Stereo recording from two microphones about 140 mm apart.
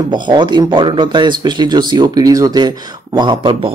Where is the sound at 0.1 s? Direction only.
30° right (ahead or behind).